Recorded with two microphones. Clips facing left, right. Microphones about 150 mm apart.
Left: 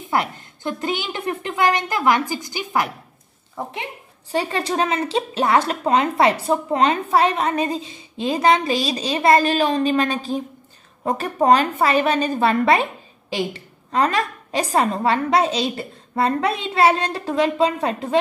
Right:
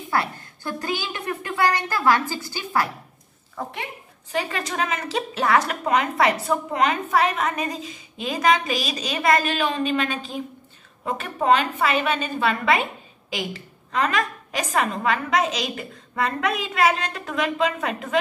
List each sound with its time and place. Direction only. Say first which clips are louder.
0.1 s a woman's voice: left 3 dB; 20° left (ahead or behind)